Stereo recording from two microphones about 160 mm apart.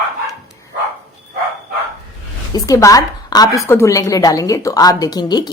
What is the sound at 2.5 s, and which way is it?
A woman's voice, 20° left (ahead or behind).